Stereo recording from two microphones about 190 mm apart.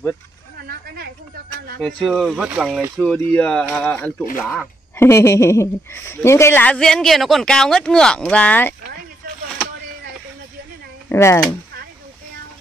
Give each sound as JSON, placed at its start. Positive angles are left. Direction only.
{"t": 0.6, "sound": "a sound", "side_deg": -55}
{"t": 1.8, "sound": "a woman's voice", "side_deg": 5}
{"t": 4.9, "sound": "a woman's voice", "side_deg": 15}
{"t": 11.1, "sound": "speech", "side_deg": 15}